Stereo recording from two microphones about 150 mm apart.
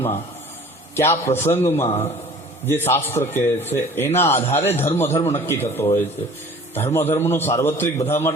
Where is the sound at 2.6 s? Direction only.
15° left (ahead or behind).